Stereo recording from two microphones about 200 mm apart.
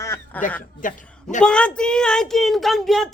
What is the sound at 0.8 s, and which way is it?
Speech, 40° left (ahead or behind).